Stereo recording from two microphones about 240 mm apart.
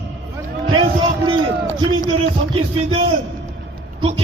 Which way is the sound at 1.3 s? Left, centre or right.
Centre.